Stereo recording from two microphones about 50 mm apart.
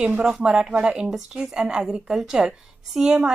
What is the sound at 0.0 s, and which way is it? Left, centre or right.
A woman's voice, centre.